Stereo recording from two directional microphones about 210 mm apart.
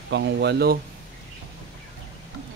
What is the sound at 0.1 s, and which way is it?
Speech, 55° right (ahead or behind).